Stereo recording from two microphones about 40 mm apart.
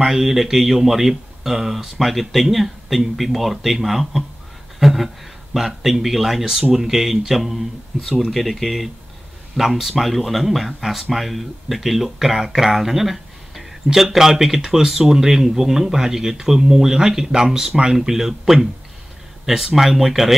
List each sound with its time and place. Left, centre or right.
0.0 s speech: centre